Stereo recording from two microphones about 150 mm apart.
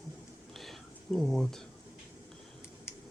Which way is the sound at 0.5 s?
Centre (ahead or behind).